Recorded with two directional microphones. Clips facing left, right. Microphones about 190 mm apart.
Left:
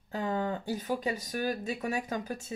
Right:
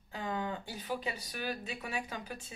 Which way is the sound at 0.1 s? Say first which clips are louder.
Left 5 dB; 40° left (ahead or behind).